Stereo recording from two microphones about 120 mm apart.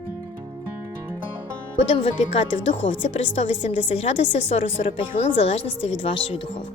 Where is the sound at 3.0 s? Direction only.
65° left (ahead or behind).